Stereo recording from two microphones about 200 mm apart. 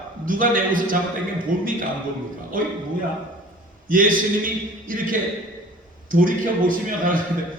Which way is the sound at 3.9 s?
45° right (ahead or behind).